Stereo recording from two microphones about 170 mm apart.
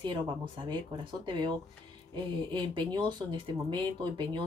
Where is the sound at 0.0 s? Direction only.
25° right (ahead or behind).